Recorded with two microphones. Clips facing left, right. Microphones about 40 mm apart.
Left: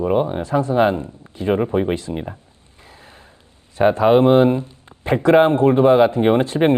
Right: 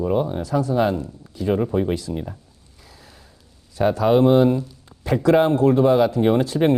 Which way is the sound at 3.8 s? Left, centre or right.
Left.